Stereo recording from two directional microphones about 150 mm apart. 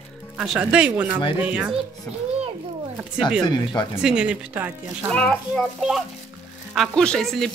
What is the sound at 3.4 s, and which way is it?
Speech, 25° left (ahead or behind).